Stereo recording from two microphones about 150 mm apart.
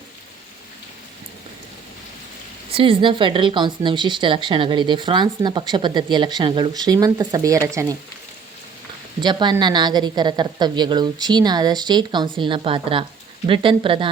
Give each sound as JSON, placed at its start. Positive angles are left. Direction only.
{"t": 2.7, "sound": "speech", "side_deg": -35}
{"t": 9.2, "sound": "a woman's voice", "side_deg": -30}